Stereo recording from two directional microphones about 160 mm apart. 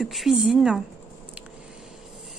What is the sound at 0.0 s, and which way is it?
Speech, centre (ahead or behind).